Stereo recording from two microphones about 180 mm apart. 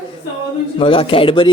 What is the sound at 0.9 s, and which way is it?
Speech, 30° left (ahead or behind).